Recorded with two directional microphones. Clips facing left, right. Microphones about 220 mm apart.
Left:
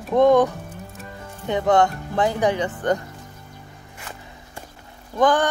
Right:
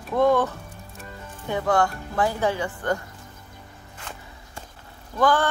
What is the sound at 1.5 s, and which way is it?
Speech, 20° left (ahead or behind).